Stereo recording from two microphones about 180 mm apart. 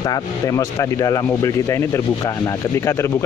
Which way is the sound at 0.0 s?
20° left (ahead or behind).